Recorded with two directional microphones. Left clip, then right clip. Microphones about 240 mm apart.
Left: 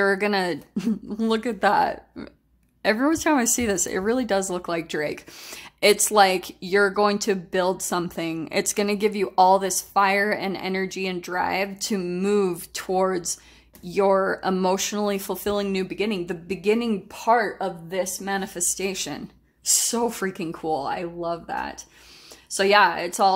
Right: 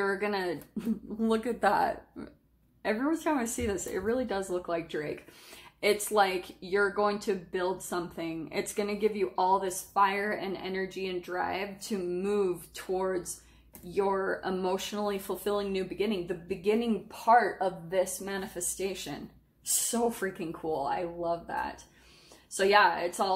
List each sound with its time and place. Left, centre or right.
0.0 s speech: left
2.8 s speech: left